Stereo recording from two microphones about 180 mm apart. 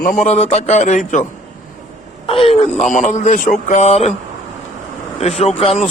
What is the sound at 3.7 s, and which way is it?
Speech, 35° left (ahead or behind).